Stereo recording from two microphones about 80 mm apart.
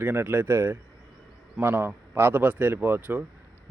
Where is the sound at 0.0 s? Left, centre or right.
Right.